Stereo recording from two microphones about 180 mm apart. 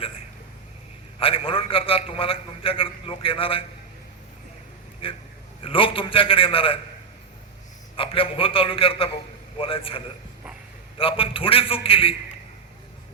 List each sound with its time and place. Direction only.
1.2 s a sound: 30° left (ahead or behind)
5.0 s a man's voice: 30° left (ahead or behind)
7.9 s a man's voice: 30° left (ahead or behind)